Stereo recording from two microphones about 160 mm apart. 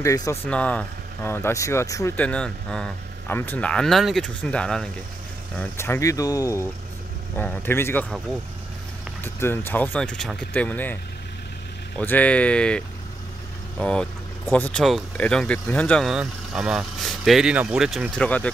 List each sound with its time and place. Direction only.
0.0 s speech: 20° left (ahead or behind)
0.5 s speech: 10° left (ahead or behind)
5.6 s speech: 15° left (ahead or behind)
9.2 s speech: 15° left (ahead or behind)
12.0 s speech: 10° left (ahead or behind)
16.1 s speech: 5° right (ahead or behind)